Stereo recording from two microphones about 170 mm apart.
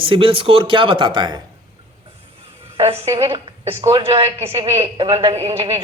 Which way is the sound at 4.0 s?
30° right (ahead or behind).